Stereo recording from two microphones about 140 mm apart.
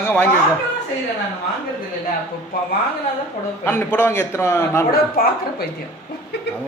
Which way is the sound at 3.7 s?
15° left (ahead or behind).